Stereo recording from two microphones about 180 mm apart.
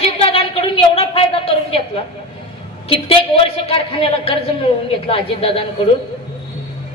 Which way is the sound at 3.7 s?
30° left (ahead or behind).